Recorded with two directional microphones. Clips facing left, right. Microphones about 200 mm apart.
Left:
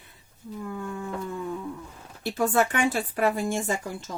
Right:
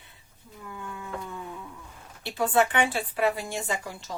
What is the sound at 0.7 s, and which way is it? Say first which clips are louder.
Speech: left 5 dB; 45° left (ahead or behind).